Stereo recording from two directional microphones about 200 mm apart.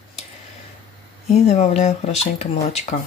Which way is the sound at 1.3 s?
30° left (ahead or behind).